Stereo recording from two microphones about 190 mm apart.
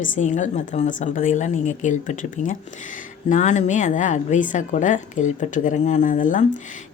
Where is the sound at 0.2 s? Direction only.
40° left (ahead or behind).